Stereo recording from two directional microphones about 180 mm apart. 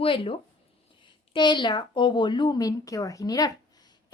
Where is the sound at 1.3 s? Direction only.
25° left (ahead or behind).